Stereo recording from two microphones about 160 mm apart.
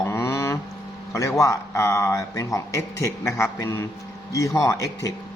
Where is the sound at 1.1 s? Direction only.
20° left (ahead or behind).